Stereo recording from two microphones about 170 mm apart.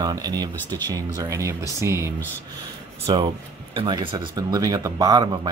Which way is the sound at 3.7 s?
30° right (ahead or behind).